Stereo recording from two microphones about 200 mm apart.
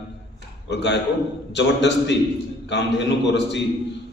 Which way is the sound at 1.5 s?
60° left (ahead or behind).